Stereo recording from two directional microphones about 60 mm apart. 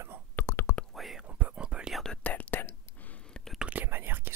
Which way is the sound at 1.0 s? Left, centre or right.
Centre.